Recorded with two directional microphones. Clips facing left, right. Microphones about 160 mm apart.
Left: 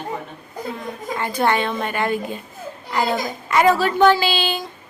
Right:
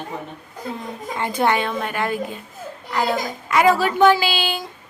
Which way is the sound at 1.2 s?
20° right (ahead or behind).